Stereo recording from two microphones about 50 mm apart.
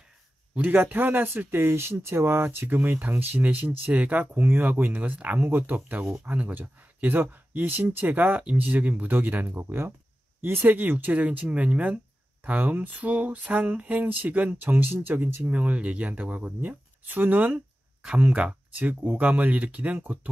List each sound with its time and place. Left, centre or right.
0.6 s speech: right
8.4 s speech: right
15.4 s speech: right